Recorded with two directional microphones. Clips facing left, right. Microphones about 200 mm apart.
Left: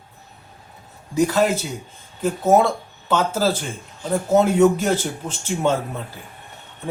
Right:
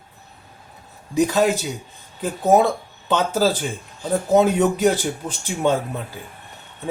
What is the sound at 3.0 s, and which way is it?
A man's voice, 15° right (ahead or behind).